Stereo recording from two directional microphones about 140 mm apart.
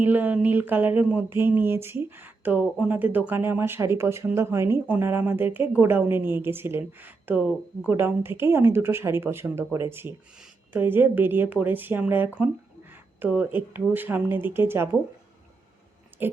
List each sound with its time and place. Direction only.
0.0 s speech: 10° right (ahead or behind)